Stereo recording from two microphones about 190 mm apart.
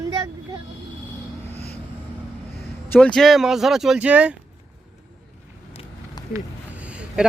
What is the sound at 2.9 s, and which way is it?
Speech, 5° left (ahead or behind).